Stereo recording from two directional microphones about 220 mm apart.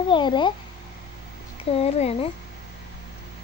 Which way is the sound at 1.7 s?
25° left (ahead or behind).